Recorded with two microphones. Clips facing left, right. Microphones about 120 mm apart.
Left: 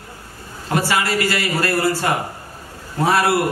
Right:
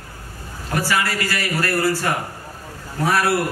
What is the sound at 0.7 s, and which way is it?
A man's voice, 25° left (ahead or behind).